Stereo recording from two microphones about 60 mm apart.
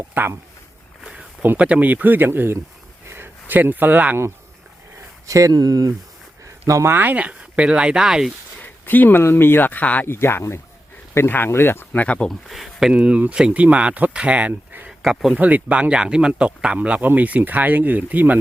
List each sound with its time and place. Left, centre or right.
0.1 s speech: right
1.5 s speech: right
5.2 s speech: right
6.8 s speech: right; by 8.3 s centre
8.6 s a sound: left
9.2 s speech: left
10.1 s speech: left
11.9 s speech: left
12.3 s speech: centre
12.9 s speech: centre
14.8 s speech: centre
15.4 s speech: right